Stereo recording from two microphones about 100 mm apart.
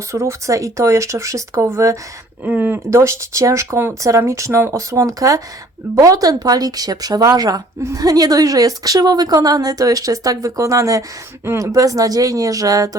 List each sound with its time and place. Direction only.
0.1 s a woman's voice: 30° right (ahead or behind)